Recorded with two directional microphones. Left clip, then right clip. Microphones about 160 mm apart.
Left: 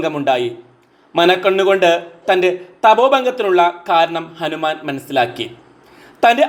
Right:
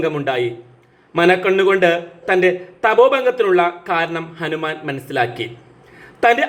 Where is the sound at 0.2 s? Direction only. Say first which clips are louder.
Left 3 dB; 20° left (ahead or behind).